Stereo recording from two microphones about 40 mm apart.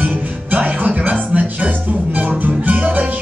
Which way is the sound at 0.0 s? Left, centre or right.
Right.